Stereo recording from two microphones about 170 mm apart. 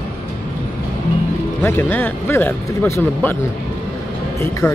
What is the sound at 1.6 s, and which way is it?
Speech, 10° left (ahead or behind).